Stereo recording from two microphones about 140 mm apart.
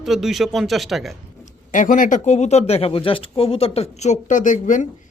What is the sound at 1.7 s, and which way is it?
Speech, 70° left (ahead or behind).